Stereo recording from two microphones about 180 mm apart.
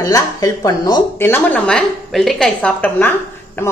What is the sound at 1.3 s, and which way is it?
A woman's voice, 5° left (ahead or behind).